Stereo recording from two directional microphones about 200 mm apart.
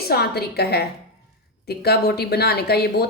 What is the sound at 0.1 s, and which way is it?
Speech, 50° left (ahead or behind).